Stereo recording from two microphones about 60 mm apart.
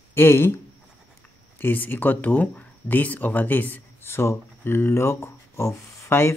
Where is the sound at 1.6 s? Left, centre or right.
Left.